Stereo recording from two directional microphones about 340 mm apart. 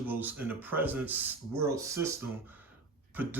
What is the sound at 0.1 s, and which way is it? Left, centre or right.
Speech, centre.